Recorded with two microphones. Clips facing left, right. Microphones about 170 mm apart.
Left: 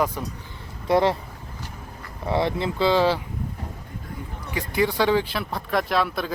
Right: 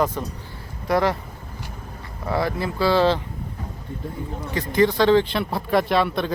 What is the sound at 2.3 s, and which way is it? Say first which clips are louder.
Speech: even; 25° left (ahead or behind).